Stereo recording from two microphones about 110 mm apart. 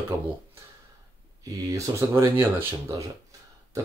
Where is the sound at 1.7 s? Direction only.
25° right (ahead or behind).